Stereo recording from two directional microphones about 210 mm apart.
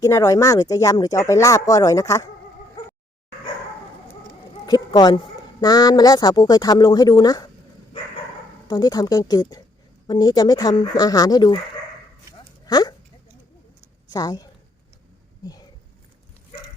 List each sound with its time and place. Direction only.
0.0 s speech: 15° left (ahead or behind)
4.6 s speech: 20° left (ahead or behind)
8.6 s speech: 20° left (ahead or behind)
12.6 s speech: 20° left (ahead or behind)
14.1 s speech: 20° left (ahead or behind)